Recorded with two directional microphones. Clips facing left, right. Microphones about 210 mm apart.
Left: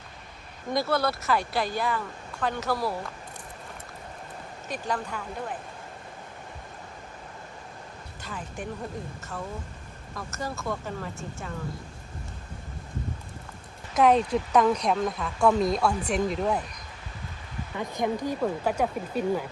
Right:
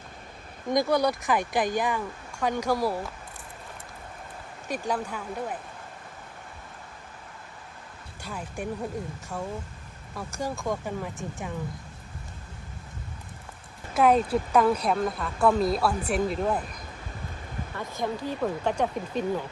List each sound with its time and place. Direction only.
0.7 s speech: 15° right (ahead or behind)
4.7 s speech: 10° right (ahead or behind)
8.2 s speech: 10° right (ahead or behind)
10.2 s speech: 10° right (ahead or behind)
13.9 s speech: 5° right (ahead or behind)
17.7 s speech: 15° left (ahead or behind)